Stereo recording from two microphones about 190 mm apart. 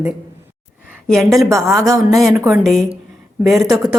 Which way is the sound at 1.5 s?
15° right (ahead or behind).